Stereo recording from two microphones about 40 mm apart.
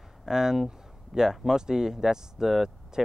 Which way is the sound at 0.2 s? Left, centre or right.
Centre.